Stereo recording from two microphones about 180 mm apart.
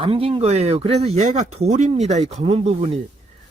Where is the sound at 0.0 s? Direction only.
30° right (ahead or behind).